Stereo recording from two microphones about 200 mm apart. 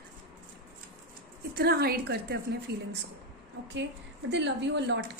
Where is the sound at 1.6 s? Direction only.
50° right (ahead or behind).